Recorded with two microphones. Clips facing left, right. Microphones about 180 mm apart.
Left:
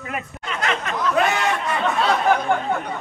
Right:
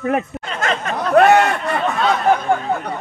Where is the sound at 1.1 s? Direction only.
60° right (ahead or behind).